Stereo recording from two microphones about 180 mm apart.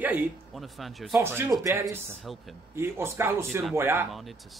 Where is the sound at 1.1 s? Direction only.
15° right (ahead or behind).